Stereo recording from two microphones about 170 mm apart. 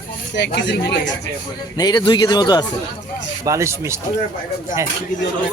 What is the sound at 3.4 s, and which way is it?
Speech, 15° right (ahead or behind).